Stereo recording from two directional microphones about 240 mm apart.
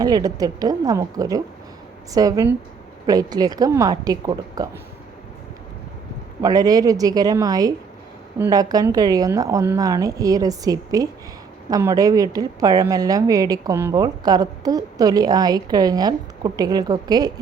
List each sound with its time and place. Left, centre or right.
0.0 s a woman's voice: centre
6.4 s a woman's voice: centre